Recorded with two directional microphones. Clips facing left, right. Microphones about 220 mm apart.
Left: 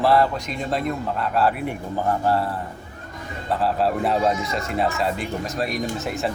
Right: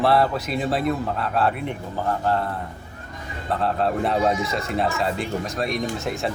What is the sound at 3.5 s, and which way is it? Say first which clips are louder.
A man's voice: left 1 dB; centre (ahead or behind).